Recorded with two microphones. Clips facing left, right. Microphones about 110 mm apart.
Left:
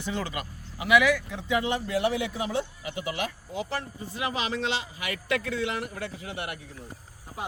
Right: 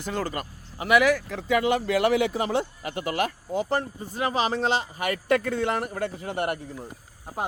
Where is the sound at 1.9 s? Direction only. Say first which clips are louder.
Right 5 dB; 85° right.